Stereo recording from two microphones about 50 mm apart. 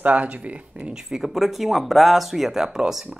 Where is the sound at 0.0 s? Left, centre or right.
Right.